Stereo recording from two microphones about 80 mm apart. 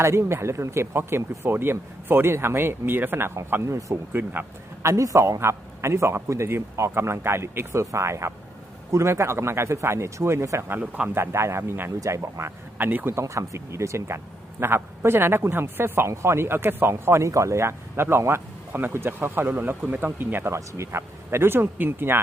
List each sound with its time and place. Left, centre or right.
0.0 s speech: right
4.1 s a man's voice: right
4.9 s speech: right
10.7 s speech: centre
11.1 s speech: right
12.8 s speech: right
13.1 s speech: right